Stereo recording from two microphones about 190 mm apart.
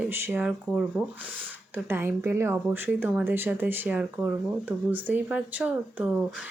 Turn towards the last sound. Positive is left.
turn(degrees=-5)  # may be behind; listen again after turning